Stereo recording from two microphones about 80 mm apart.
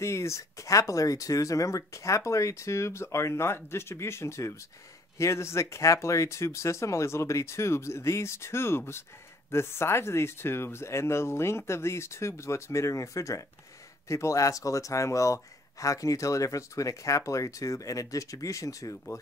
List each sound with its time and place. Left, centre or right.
0.0 s speech: left